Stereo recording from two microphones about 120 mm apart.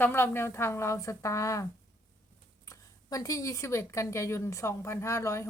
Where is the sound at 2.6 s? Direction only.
30° left (ahead or behind).